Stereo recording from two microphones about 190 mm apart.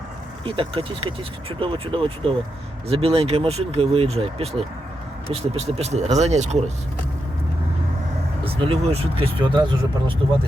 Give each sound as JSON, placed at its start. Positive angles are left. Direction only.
{"t": 0.4, "sound": "speech", "side_deg": -25}
{"t": 8.4, "sound": "speech", "side_deg": -30}